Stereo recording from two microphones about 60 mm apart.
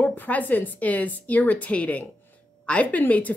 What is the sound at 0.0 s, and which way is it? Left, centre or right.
A woman's voice, left.